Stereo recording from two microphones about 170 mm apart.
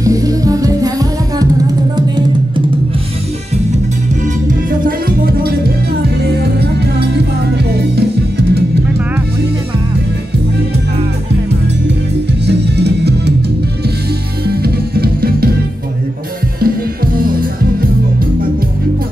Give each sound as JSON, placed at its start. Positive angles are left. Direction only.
{"t": 0.0, "sound": "music", "side_deg": -20}
{"t": 4.5, "sound": "music", "side_deg": -55}
{"t": 12.4, "sound": "music", "side_deg": -80}
{"t": 14.5, "sound": "music", "side_deg": -65}
{"t": 16.5, "sound": "music", "side_deg": -60}